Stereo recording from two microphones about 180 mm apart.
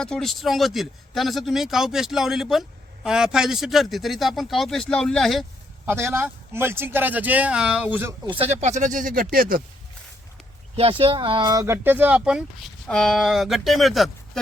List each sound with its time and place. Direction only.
0.0 s speech: 5° left (ahead or behind)
5.9 s speech: 15° right (ahead or behind)
8.4 s speech: 40° right (ahead or behind)
10.8 s speech: 30° right (ahead or behind); by 14.1 s centre (ahead or behind)